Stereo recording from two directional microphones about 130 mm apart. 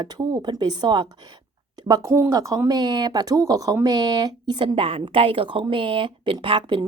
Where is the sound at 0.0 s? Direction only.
30° right (ahead or behind).